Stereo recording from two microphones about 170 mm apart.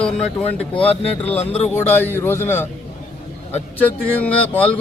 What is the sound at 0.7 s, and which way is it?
Speech, 35° left (ahead or behind).